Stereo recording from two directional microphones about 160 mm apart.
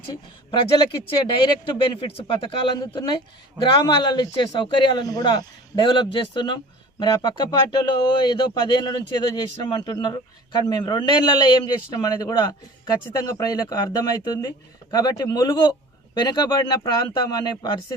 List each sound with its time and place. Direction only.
0.8 s speech: 25° left (ahead or behind)